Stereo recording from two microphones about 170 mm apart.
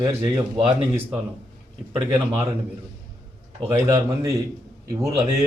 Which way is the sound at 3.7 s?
15° right (ahead or behind).